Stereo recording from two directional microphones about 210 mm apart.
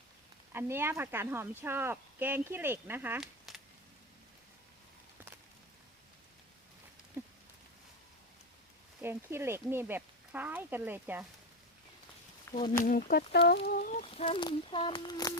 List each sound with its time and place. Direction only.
0.5 s speech: 10° right (ahead or behind)
7.2 s a sound: 10° right (ahead or behind)
9.0 s speech: 10° right (ahead or behind)
12.5 s speech: 10° left (ahead or behind)
12.8 s speech: 40° left (ahead or behind)
13.7 s a sound: 40° left (ahead or behind)
14.3 s speech: 25° left (ahead or behind)